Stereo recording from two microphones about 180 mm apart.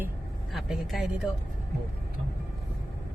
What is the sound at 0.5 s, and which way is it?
Speech, centre (ahead or behind).